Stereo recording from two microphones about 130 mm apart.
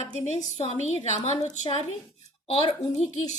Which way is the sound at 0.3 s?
60° left (ahead or behind).